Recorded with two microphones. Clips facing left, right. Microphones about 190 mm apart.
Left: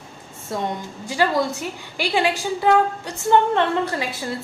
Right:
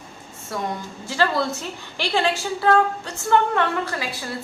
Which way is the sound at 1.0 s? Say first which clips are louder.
Left 2 dB; 15° left (ahead or behind).